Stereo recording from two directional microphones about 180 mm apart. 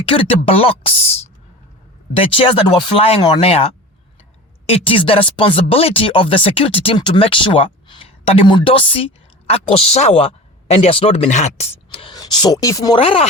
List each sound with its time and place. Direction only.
0.0 s speech: 30° left (ahead or behind)